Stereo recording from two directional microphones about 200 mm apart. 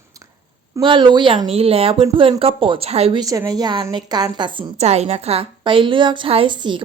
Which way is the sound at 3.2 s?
15° right (ahead or behind).